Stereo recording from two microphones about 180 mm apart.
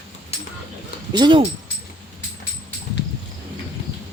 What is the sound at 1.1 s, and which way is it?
Speech, 25° right (ahead or behind).